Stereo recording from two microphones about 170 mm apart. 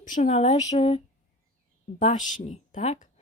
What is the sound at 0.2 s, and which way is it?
A woman's voice, 40° left (ahead or behind).